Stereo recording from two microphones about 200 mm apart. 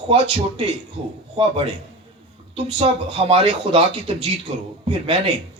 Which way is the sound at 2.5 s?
30° right (ahead or behind).